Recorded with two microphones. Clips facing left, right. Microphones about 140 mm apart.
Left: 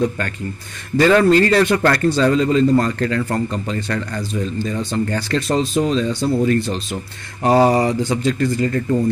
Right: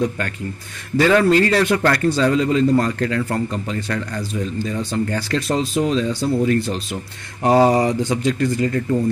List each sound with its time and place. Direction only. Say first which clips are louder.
0.9 s a man's voice: left 2 dB; 5° right (ahead or behind)